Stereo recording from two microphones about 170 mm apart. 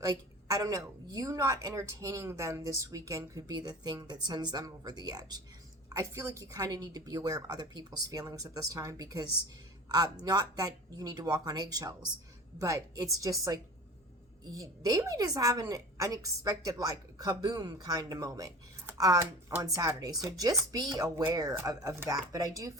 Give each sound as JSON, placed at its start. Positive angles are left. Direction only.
{"t": 0.0, "sound": "a woman's voice", "side_deg": -20}
{"t": 10.2, "sound": "a woman's voice", "side_deg": -25}